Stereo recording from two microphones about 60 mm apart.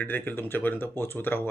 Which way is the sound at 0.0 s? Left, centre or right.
Left.